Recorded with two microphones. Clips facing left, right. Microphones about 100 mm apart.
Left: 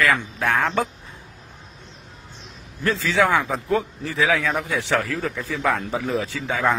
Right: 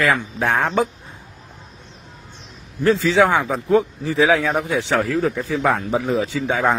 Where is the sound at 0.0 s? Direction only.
15° right (ahead or behind).